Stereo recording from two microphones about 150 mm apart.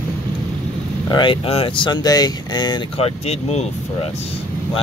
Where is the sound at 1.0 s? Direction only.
30° left (ahead or behind).